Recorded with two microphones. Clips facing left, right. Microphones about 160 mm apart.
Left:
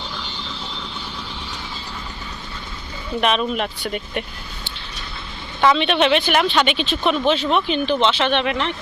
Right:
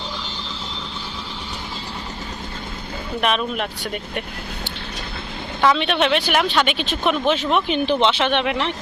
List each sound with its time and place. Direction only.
3.2 s speech: 5° right (ahead or behind)
5.6 s speech: 5° right (ahead or behind)